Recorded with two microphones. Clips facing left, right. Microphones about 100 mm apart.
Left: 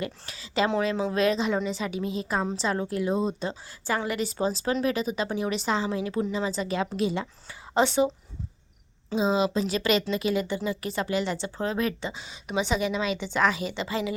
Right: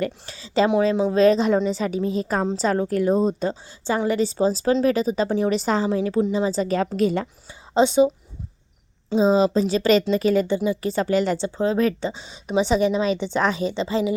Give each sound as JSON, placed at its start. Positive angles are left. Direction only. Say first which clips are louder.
{"t": 0.0, "sound": "a woman's voice", "louder": "right 7 dB", "side_deg": -30}
{"t": 3.8, "sound": "a woman's voice", "louder": "right 7 dB", "side_deg": -25}
{"t": 7.8, "sound": "speech", "louder": "right 6 dB", "side_deg": -20}
{"t": 9.0, "sound": "a woman's voice", "louder": "right 7 dB", "side_deg": -35}
{"t": 10.4, "sound": "a woman's voice", "louder": "right 7 dB", "side_deg": -25}
{"t": 11.3, "sound": "a woman's voice", "louder": "right 7 dB", "side_deg": -25}